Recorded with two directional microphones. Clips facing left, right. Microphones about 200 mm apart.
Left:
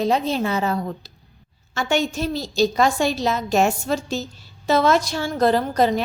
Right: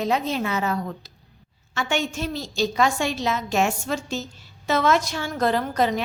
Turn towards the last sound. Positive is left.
turn(degrees=35)  # may be behind; listen again after turning